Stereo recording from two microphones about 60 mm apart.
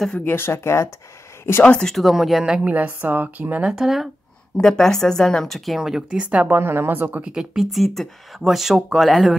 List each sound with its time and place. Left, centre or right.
0.2 s speech: left
1.7 s speech: centre
2.0 s speech: centre
2.6 s speech: right
3.7 s speech: centre
4.6 s speech: centre
5.8 s speech: centre
6.4 s speech: right
7.3 s speech: centre